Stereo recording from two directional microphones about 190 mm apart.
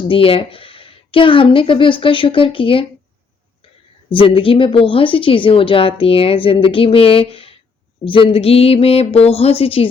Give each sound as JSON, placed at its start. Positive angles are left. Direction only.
{"t": 0.1, "sound": "a woman's voice", "side_deg": 30}
{"t": 4.1, "sound": "a woman's voice", "side_deg": 30}
{"t": 8.0, "sound": "a sound", "side_deg": 30}